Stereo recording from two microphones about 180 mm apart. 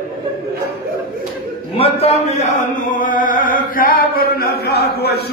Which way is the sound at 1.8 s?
35° left (ahead or behind).